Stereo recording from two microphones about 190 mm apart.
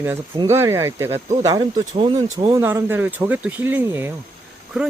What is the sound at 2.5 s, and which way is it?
Speech, 15° right (ahead or behind).